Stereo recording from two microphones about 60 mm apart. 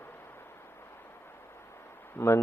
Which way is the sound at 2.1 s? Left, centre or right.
Left.